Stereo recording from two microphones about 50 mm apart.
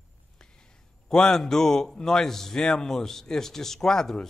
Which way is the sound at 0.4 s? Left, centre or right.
Centre.